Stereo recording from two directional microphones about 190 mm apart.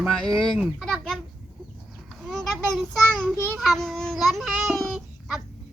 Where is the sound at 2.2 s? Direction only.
Centre (ahead or behind).